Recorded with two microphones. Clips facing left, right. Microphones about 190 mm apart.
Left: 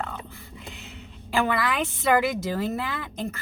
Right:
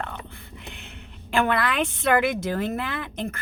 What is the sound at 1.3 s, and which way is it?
A woman's voice, 60° right (ahead or behind).